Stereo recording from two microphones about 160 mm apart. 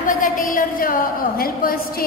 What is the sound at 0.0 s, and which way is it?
A woman's voice, 55° left (ahead or behind).